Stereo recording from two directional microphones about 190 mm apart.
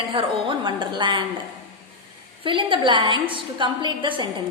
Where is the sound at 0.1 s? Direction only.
25° right (ahead or behind).